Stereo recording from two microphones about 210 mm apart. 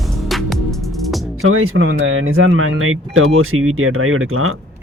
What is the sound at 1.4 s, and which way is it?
Speech, 80° right.